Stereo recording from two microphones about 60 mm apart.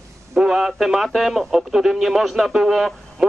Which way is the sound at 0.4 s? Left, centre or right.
Centre.